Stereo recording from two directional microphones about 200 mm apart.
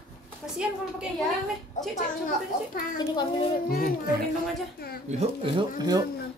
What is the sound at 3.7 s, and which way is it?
Speech, 45° left (ahead or behind).